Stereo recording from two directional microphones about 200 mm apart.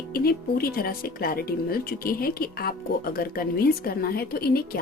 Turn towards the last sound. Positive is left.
turn(degrees=50)  # may be behind; listen again after turning